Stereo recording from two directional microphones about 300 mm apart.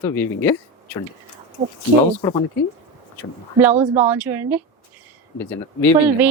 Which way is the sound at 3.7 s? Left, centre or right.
Right.